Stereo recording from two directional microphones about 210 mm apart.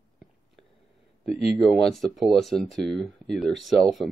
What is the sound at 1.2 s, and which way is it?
Speech, centre (ahead or behind).